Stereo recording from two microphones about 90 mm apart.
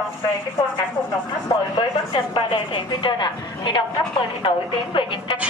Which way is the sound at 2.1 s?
70° left (ahead or behind).